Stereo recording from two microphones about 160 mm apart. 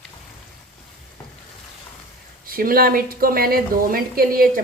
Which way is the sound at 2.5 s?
65° right (ahead or behind).